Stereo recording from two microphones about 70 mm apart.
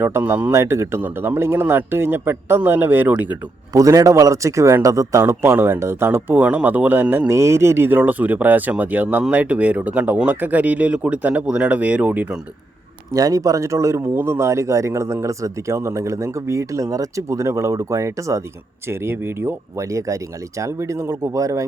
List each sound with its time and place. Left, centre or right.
0.0 s speech: right
3.7 s speech: right
5.2 s speech: right
7.3 s speech: right
7.9 s speech: right
13.1 s speech: right